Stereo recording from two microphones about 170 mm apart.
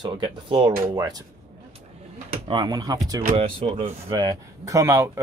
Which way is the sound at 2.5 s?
25° right (ahead or behind).